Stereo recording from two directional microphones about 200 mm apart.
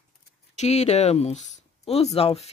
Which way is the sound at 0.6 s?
35° left (ahead or behind).